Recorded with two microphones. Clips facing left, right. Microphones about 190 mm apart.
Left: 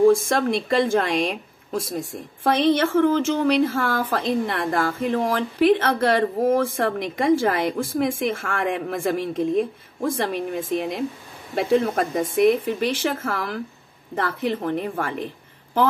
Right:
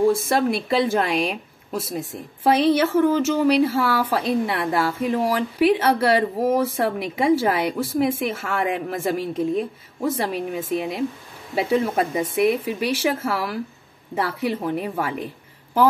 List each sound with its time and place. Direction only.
0.1 s speech: 5° right (ahead or behind)